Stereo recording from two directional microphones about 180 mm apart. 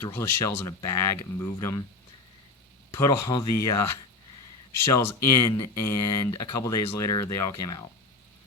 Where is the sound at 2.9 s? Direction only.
15° left (ahead or behind).